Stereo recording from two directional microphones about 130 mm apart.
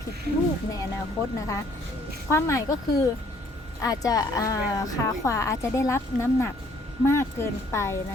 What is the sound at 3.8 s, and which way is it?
A woman's voice, 30° left (ahead or behind).